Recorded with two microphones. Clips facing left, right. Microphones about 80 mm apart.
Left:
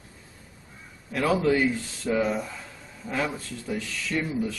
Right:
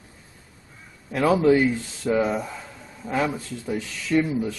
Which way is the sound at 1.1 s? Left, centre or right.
Right.